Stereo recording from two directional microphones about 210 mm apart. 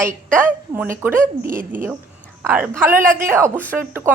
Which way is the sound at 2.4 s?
10° right (ahead or behind).